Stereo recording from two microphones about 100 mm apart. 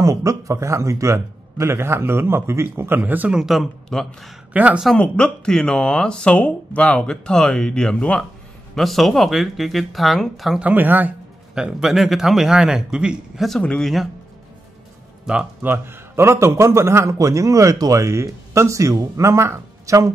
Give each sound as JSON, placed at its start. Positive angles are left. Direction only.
{"t": 0.0, "sound": "a man's voice", "side_deg": -35}
{"t": 3.3, "sound": "a man's voice", "side_deg": 0}
{"t": 4.6, "sound": "speech", "side_deg": -10}
{"t": 4.9, "sound": "a man's voice", "side_deg": 10}
{"t": 10.6, "sound": "speech", "side_deg": -15}
{"t": 11.5, "sound": "a man's voice", "side_deg": -5}
{"t": 13.5, "sound": "a man's voice", "side_deg": 10}
{"t": 15.3, "sound": "a man's voice", "side_deg": -5}
{"t": 15.6, "sound": "a man's voice", "side_deg": -20}